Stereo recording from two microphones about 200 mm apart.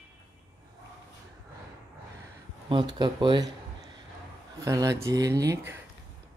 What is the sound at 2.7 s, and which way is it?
Speech, 25° right (ahead or behind).